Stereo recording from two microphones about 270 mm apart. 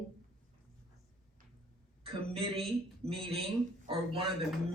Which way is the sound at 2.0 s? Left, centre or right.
Right.